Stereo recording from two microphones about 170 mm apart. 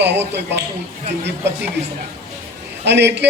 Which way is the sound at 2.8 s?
90° right.